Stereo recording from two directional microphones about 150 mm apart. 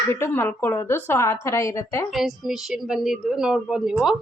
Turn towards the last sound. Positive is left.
turn(degrees=0)  # may be behind; listen again after turning